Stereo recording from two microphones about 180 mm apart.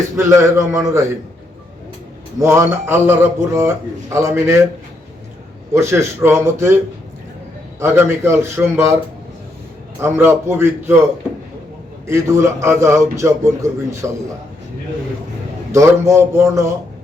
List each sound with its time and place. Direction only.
0.2 s a man's voice: 15° right (ahead or behind)
2.4 s a man's voice: 15° right (ahead or behind)
5.7 s a man's voice: 15° right (ahead or behind)
7.8 s a man's voice: 15° right (ahead or behind)
10.0 s a man's voice: 15° right (ahead or behind)
12.0 s a man's voice: 15° right (ahead or behind)
15.7 s a man's voice: 15° right (ahead or behind)